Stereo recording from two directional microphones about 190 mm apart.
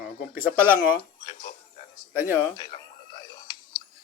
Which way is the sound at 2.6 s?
25° left (ahead or behind).